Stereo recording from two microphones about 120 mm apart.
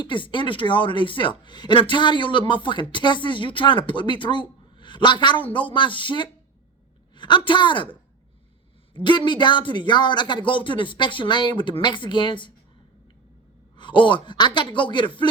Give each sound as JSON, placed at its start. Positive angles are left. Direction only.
{"t": 0.0, "sound": "speech", "side_deg": 40}
{"t": 9.0, "sound": "speech", "side_deg": 40}
{"t": 13.7, "sound": "speech", "side_deg": 40}